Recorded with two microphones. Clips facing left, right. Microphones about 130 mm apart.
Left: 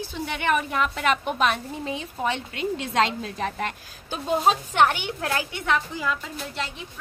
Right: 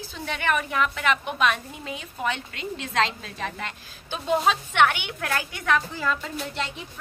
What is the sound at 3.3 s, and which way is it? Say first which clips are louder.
A woman's voice: left 2 dB; 40° left (ahead or behind).